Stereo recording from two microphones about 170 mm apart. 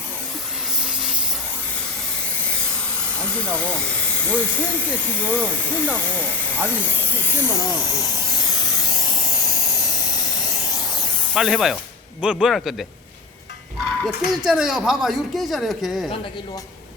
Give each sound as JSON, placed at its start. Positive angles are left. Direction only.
{"t": 3.2, "sound": "speech", "side_deg": 10}
{"t": 7.7, "sound": "speech", "side_deg": 25}
{"t": 8.2, "sound": "spray", "side_deg": 25}
{"t": 10.9, "sound": "spray", "side_deg": 0}
{"t": 12.2, "sound": "speech", "side_deg": -5}
{"t": 14.0, "sound": "speech", "side_deg": -5}